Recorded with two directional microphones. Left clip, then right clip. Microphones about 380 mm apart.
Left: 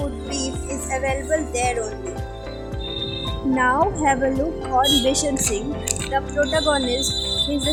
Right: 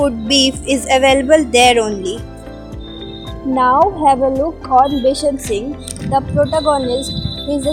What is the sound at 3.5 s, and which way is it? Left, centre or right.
Speech, centre.